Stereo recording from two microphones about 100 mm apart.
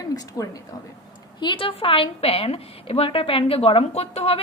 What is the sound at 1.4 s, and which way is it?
A woman's voice, 55° left (ahead or behind).